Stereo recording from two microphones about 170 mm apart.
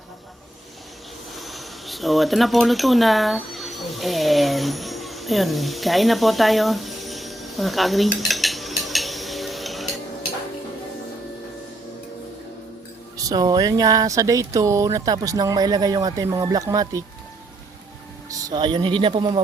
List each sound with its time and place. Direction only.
1.4 s a sound: centre (ahead or behind)
13.1 s speech: 20° right (ahead or behind)
18.3 s speech: 20° right (ahead or behind)